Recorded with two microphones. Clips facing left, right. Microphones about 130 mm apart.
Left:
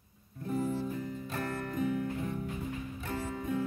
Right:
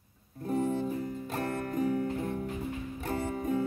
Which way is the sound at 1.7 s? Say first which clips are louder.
Right 3 dB; 40° right (ahead or behind).